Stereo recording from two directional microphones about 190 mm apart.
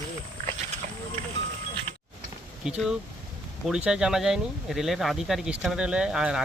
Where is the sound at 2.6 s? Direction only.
5° right (ahead or behind).